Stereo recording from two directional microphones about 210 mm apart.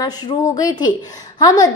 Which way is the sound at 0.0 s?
20° left (ahead or behind).